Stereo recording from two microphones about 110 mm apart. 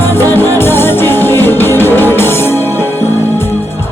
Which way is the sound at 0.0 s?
20° left (ahead or behind).